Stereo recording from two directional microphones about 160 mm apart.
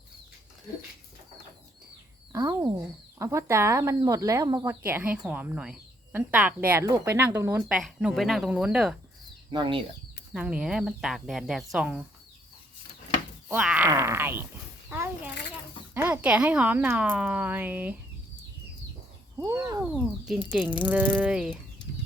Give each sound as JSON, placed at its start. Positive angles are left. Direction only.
{"t": 2.3, "sound": "speech", "side_deg": -20}
{"t": 4.9, "sound": "a woman's voice", "side_deg": -10}
{"t": 7.7, "sound": "speech", "side_deg": 0}
{"t": 9.5, "sound": "speech", "side_deg": -30}
{"t": 10.3, "sound": "speech", "side_deg": -5}
{"t": 13.5, "sound": "a woman's voice", "side_deg": -10}
{"t": 14.8, "sound": "a sound", "side_deg": -15}
{"t": 16.0, "sound": "a woman's voice", "side_deg": -10}
{"t": 19.4, "sound": "a woman's voice", "side_deg": -15}
{"t": 19.8, "sound": "a woman's voice", "side_deg": -5}